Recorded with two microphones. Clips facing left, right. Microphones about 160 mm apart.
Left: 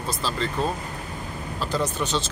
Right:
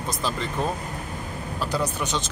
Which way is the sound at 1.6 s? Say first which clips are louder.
Left 1 dB; 10° right (ahead or behind).